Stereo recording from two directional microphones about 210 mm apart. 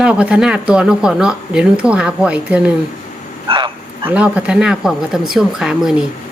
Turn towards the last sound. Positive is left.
turn(degrees=-5)  # may be behind; listen again after turning